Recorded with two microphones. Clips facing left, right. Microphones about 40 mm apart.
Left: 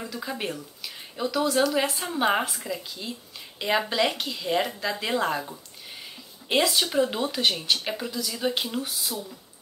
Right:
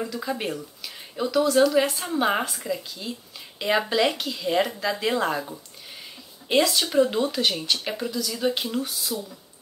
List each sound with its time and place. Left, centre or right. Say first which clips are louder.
0.0 s speech: right 3 dB; centre